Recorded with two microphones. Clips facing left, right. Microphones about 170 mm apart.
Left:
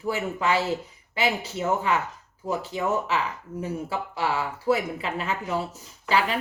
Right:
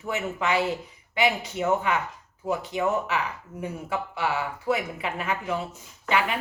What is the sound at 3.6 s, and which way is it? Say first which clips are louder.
Speech: even; 30° left (ahead or behind).